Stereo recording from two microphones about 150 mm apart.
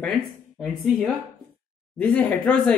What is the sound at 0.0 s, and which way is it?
A woman's voice, centre (ahead or behind).